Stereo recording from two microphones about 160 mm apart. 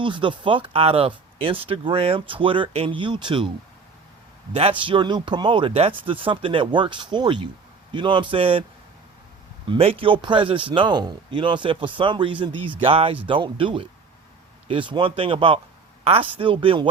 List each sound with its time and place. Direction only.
0.0 s speech: 30° right (ahead or behind)
4.5 s speech: 35° right (ahead or behind)
9.6 s speech: 35° right (ahead or behind)